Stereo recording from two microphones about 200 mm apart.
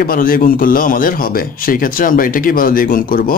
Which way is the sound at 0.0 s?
45° left (ahead or behind).